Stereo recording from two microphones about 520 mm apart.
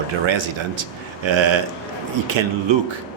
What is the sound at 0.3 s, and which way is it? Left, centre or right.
Speech, right.